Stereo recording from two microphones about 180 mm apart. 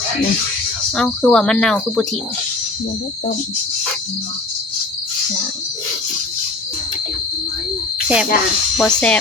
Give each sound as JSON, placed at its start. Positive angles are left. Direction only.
{"t": 0.9, "sound": "speech", "side_deg": 5}
{"t": 8.0, "sound": "speech", "side_deg": -5}
{"t": 8.8, "sound": "speech", "side_deg": 5}